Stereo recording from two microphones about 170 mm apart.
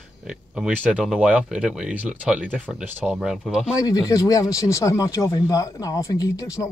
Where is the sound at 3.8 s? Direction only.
20° left (ahead or behind).